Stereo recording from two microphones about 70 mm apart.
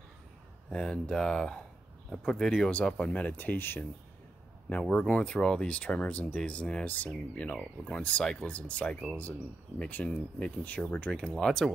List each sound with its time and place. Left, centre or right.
0.7 s speech: centre; by 3.8 s left
4.6 s speech: centre